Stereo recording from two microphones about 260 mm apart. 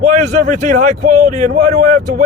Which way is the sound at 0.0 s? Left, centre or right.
Right.